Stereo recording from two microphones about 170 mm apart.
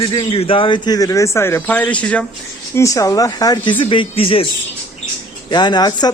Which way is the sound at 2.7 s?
20° left (ahead or behind).